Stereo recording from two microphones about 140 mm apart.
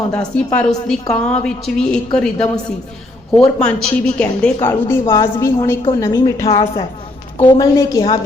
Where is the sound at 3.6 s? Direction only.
5° left (ahead or behind).